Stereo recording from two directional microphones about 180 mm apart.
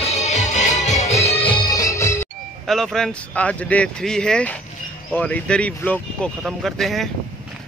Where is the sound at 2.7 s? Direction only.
Centre (ahead or behind).